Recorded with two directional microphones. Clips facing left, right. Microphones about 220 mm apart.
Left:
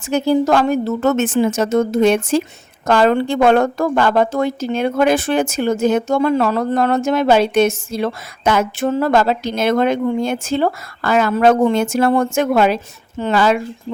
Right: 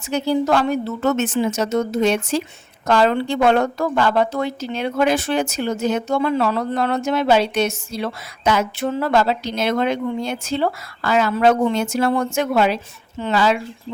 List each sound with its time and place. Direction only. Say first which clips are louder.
0.1 s a woman's voice: left 4 dB; 45° left (ahead or behind)